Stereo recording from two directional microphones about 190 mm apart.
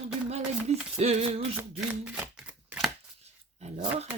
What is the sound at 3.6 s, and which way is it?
Speech, 35° right (ahead or behind).